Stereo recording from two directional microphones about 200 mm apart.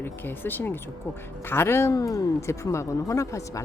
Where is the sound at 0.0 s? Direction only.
10° left (ahead or behind).